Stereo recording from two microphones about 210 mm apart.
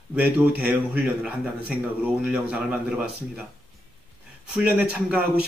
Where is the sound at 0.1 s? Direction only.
5° right (ahead or behind).